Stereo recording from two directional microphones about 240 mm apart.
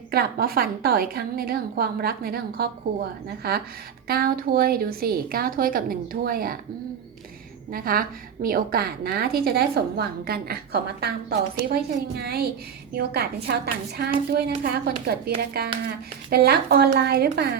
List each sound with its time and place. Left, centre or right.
0.1 s a woman's voice: right
7.7 s a woman's voice: right